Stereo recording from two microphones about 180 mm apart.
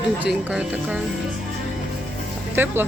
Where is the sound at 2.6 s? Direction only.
10° right (ahead or behind).